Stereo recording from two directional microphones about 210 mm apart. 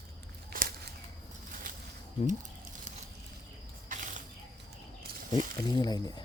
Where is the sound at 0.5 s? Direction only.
40° right (ahead or behind).